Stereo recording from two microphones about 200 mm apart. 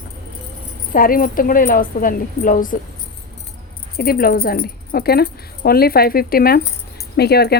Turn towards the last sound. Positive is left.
turn(degrees=55)  # may be behind; listen again after turning